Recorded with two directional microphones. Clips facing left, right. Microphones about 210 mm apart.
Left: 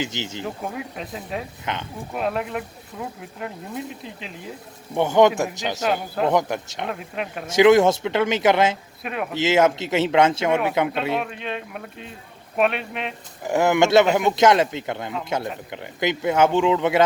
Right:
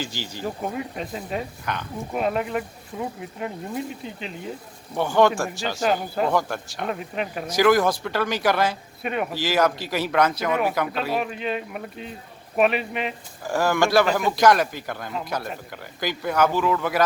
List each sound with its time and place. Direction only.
0.0 s speech: 20° left (ahead or behind)
0.4 s speech: centre (ahead or behind)
1.7 s speech: 20° left (ahead or behind)
2.1 s speech: centre (ahead or behind)
4.9 s speech: 20° left (ahead or behind)
5.8 s speech: centre (ahead or behind)
6.3 s speech: 20° left (ahead or behind)
6.8 s speech: centre (ahead or behind)
7.5 s speech: 25° left (ahead or behind)
9.0 s speech: centre (ahead or behind)
9.3 s speech: 25° left (ahead or behind)
11.1 s speech: 5° right (ahead or behind)
13.4 s speech: 20° left (ahead or behind)